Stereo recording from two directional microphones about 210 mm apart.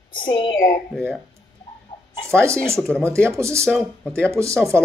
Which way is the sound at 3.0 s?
10° right (ahead or behind).